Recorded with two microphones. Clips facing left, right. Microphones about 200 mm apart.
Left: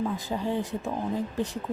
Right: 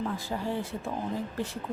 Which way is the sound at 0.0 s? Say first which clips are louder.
Left 3 dB; 20° left (ahead or behind).